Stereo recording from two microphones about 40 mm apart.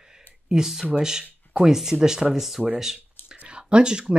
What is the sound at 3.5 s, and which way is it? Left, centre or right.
Speech, right.